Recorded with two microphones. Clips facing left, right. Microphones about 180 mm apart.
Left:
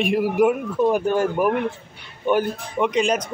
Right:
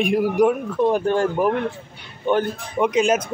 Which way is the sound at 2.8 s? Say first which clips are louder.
Right 2 dB; centre (ahead or behind).